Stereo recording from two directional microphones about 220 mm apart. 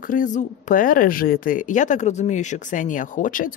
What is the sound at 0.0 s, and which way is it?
Speech, 35° left (ahead or behind).